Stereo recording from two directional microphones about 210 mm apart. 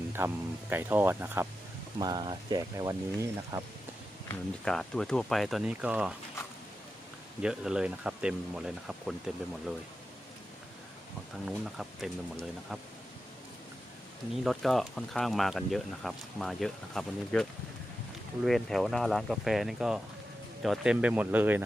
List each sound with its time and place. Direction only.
0.2 s speech: 10° right (ahead or behind)
4.3 s speech: 5° left (ahead or behind)
7.4 s speech: 5° right (ahead or behind)
11.4 s speech: centre (ahead or behind)
14.4 s speech: centre (ahead or behind)
18.4 s speech: centre (ahead or behind)